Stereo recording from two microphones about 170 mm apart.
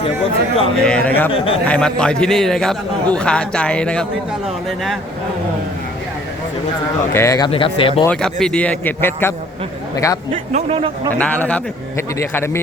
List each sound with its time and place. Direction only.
0.8 s a man's voice: 5° left (ahead or behind)
7.1 s a man's voice: 15° left (ahead or behind)
7.5 s speech: 30° left (ahead or behind)
8.0 s a man's voice: 5° left (ahead or behind); by 10.2 s 20° left (ahead or behind)
10.3 s speech: 35° right (ahead or behind)
11.2 s a man's voice: 10° left (ahead or behind)